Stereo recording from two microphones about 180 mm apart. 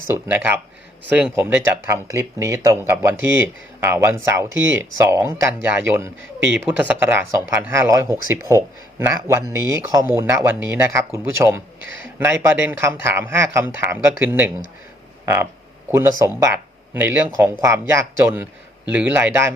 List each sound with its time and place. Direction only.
0.1 s a man's voice: 10° right (ahead or behind)
11.8 s speech: 90° right
12.2 s a man's voice: 15° right (ahead or behind)
15.9 s a man's voice: 15° right (ahead or behind)